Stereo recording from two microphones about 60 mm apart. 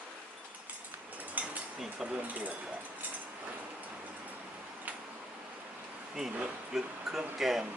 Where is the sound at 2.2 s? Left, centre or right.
Right.